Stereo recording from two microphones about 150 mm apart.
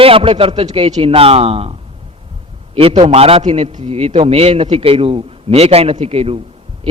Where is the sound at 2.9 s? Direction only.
45° right (ahead or behind).